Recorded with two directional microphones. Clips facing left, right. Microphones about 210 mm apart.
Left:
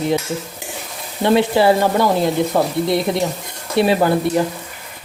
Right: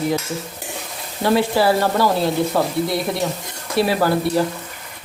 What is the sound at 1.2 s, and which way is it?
Speech, 25° left (ahead or behind).